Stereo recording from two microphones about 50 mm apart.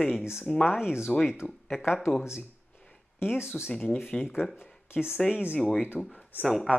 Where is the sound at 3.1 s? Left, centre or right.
Left.